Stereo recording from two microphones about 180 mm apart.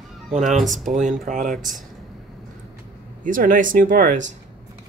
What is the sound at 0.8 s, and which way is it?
Speech, 45° right (ahead or behind).